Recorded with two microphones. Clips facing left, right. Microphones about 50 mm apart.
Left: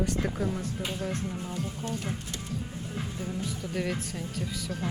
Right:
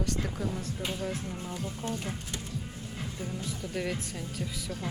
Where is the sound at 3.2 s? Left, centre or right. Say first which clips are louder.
Left 1 dB; centre.